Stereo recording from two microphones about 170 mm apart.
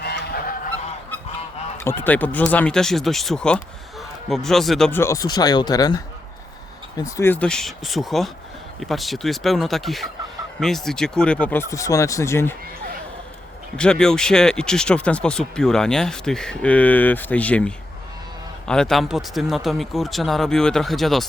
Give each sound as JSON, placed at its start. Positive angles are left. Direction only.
{"t": 0.0, "sound": "goose", "side_deg": 70}
{"t": 1.8, "sound": "speech", "side_deg": 15}
{"t": 4.9, "sound": "speech", "side_deg": 20}
{"t": 7.0, "sound": "speech", "side_deg": 15}
{"t": 13.7, "sound": "speech", "side_deg": 5}